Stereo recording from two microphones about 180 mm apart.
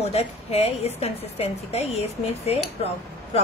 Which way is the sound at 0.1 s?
35° left (ahead or behind).